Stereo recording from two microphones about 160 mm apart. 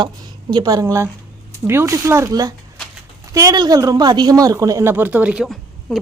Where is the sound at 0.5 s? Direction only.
25° right (ahead or behind).